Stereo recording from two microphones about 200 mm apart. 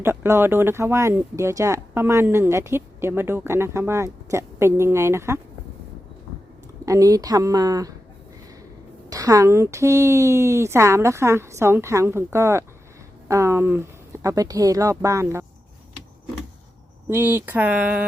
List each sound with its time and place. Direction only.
0.0 s speech: 10° right (ahead or behind)
6.8 s speech: 15° right (ahead or behind)
9.0 s speech: 15° right (ahead or behind)
17.1 s speech: 10° right (ahead or behind)